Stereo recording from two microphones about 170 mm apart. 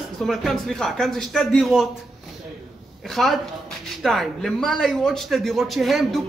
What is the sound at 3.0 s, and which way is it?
Speech, centre (ahead or behind).